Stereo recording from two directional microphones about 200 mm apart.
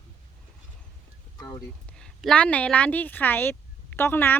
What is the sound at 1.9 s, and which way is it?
Speech, 5° left (ahead or behind).